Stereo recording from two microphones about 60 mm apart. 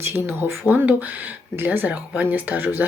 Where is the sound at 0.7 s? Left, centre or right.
Right.